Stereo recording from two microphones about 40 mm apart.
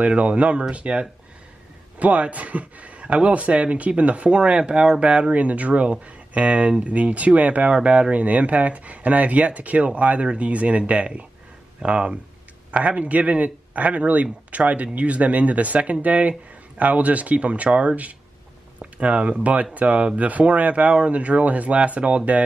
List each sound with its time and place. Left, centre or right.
0.0 s speech: right
5.3 s speech: right